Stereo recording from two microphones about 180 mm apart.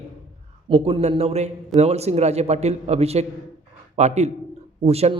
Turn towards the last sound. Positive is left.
turn(degrees=-35)  # may be behind; listen again after turning